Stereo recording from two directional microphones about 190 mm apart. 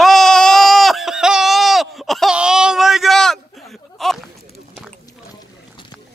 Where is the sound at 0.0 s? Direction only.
Centre (ahead or behind).